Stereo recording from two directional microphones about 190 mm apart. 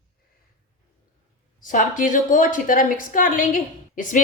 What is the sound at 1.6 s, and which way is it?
A woman's voice, 45° left (ahead or behind).